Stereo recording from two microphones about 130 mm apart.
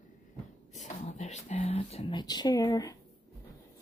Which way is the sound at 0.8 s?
65° left (ahead or behind).